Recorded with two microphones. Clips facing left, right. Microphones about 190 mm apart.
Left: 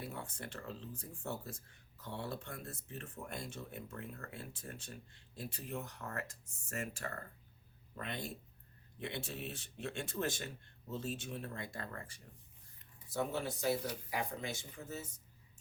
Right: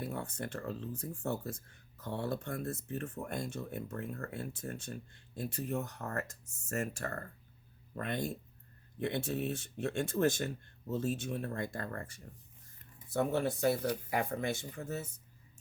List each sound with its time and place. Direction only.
0.0 s speech: 45° right (ahead or behind)